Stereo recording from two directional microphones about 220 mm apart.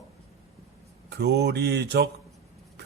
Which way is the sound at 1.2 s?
50° right (ahead or behind).